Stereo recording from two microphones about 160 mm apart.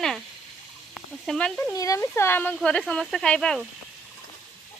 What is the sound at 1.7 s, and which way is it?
Speech, 20° left (ahead or behind).